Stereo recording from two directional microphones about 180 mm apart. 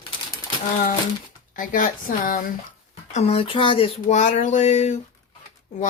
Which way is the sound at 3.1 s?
35° left (ahead or behind).